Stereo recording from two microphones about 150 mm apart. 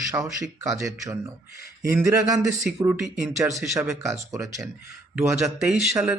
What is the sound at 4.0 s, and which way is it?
Speech, 20° right (ahead or behind).